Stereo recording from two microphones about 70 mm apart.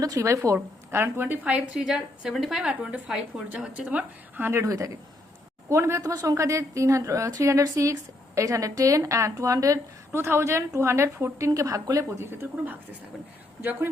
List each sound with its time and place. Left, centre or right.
0.0 s a woman's voice: right
0.4 s a woman's voice: right
1.5 s a woman's voice: centre
3.5 s speech: centre
4.6 s a woman's voice: right
10.2 s a woman's voice: right
12.1 s a woman's voice: right